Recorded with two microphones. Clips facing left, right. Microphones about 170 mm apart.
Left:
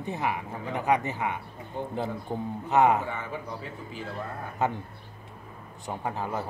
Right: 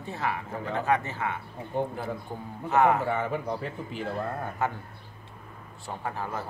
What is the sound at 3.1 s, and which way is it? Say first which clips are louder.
Speech: right 7 dB; 60° right (ahead or behind).